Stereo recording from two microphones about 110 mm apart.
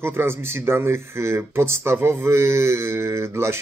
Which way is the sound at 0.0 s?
20° right (ahead or behind).